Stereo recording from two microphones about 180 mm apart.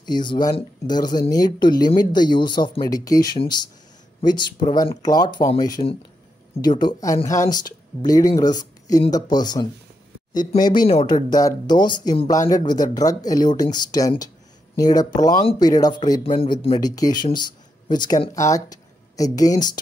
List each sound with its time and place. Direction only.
0.0 s speech: 25° left (ahead or behind)
5.8 s speech: 35° left (ahead or behind)